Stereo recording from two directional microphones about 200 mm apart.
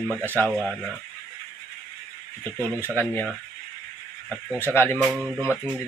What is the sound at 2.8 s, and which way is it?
Speech, 10° left (ahead or behind).